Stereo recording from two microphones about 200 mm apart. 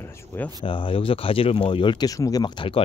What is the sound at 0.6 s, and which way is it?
Speech, 25° left (ahead or behind).